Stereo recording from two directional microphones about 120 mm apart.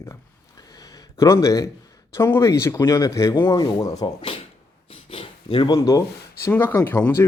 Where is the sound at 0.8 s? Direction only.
30° left (ahead or behind).